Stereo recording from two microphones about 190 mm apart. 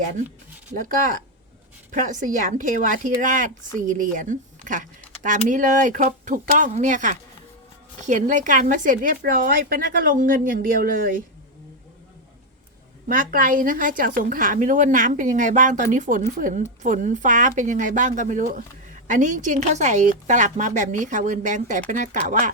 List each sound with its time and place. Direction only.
1.9 s speech: 45° right (ahead or behind)
13.1 s speech: 45° right (ahead or behind)